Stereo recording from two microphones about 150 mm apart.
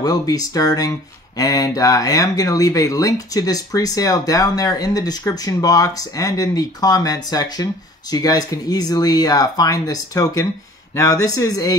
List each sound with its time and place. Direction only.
0.0 s speech: 25° left (ahead or behind)